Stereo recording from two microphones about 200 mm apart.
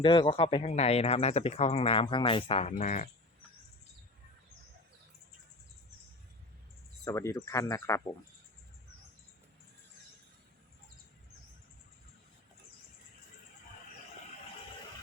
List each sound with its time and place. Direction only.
0.0 s speech: 25° left (ahead or behind)
7.0 s speech: 15° left (ahead or behind)